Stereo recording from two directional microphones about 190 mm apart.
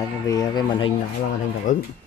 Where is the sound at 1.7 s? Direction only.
40° left (ahead or behind).